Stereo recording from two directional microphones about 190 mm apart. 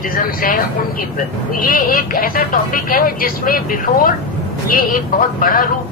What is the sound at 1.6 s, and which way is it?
Speech, 45° left (ahead or behind).